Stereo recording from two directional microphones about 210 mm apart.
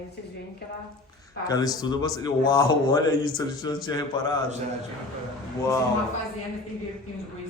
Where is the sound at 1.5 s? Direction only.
20° left (ahead or behind).